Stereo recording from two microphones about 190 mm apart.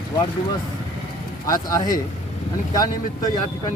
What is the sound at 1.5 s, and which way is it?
Speech, 20° left (ahead or behind).